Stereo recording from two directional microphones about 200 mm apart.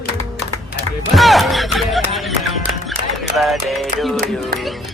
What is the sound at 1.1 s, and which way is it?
Music, centre (ahead or behind).